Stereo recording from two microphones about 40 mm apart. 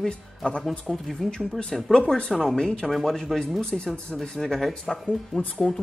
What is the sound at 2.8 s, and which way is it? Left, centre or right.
Speech, centre.